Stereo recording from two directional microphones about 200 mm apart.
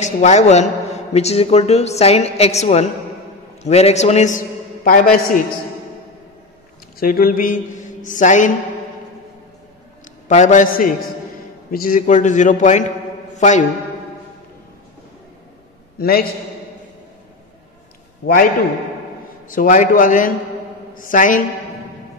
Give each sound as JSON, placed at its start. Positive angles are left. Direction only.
{"t": 0.0, "sound": "a man's voice", "side_deg": 35}
{"t": 7.0, "sound": "a man's voice", "side_deg": 45}
{"t": 10.2, "sound": "a man's voice", "side_deg": 40}
{"t": 16.0, "sound": "a man's voice", "side_deg": 50}
{"t": 19.5, "sound": "a man's voice", "side_deg": 40}